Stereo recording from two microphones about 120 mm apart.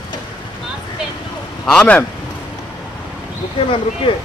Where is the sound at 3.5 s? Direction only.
50° left (ahead or behind).